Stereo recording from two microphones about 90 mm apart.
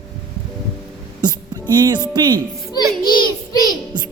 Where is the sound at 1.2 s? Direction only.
50° right (ahead or behind).